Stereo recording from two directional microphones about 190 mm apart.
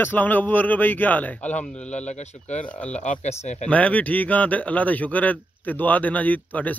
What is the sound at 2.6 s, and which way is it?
Speech, 5° left (ahead or behind).